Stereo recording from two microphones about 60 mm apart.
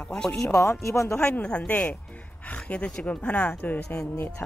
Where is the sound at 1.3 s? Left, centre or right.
Left.